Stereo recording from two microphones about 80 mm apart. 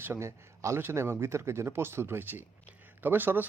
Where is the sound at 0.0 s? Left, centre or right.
Right.